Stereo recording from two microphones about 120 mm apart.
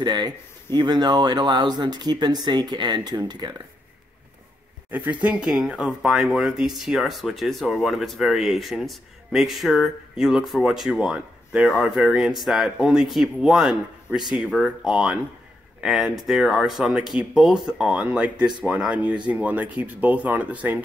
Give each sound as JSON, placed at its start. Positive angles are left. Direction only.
{"t": 0.0, "sound": "speech", "side_deg": -35}
{"t": 4.9, "sound": "speech", "side_deg": -15}